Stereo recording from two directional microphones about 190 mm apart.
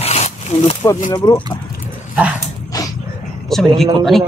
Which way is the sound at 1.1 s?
20° left (ahead or behind).